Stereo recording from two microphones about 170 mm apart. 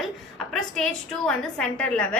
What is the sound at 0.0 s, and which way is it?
A woman's voice, centre (ahead or behind).